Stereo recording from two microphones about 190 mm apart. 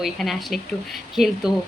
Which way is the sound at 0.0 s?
Centre (ahead or behind).